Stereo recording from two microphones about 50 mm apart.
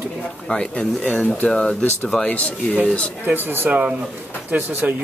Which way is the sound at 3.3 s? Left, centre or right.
Right.